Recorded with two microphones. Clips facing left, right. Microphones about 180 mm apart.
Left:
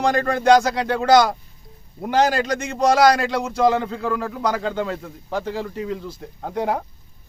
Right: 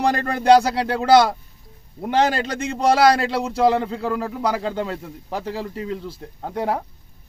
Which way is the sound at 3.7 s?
Centre (ahead or behind).